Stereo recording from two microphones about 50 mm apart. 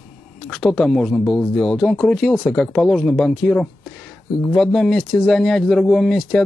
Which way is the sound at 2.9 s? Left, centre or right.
Centre.